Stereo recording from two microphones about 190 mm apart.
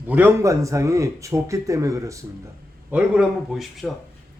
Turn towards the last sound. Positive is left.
turn(degrees=0)  # may be behind; listen again after turning